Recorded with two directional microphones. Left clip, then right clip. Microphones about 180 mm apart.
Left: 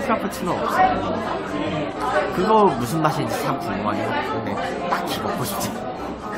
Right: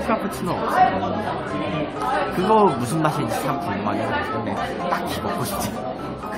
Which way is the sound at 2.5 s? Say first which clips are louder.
Even; centre (ahead or behind).